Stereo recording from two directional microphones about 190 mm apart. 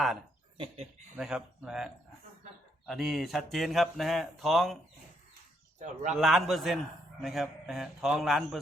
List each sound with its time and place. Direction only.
0.5 s speech: 30° right (ahead or behind)
1.1 s speech: 5° right (ahead or behind)
5.8 s speech: 40° right (ahead or behind)
6.1 s speech: centre (ahead or behind)